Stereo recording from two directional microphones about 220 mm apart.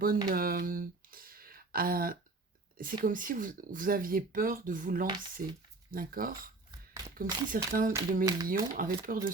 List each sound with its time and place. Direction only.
0.3 s a sound: 40° right (ahead or behind)
3.0 s speech: 40° right (ahead or behind)
8.2 s speech: 15° right (ahead or behind)
8.4 s speech: 40° right (ahead or behind)